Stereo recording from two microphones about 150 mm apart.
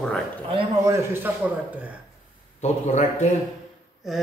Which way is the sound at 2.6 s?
50° left (ahead or behind).